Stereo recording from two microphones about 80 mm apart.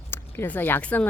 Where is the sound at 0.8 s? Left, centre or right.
Centre.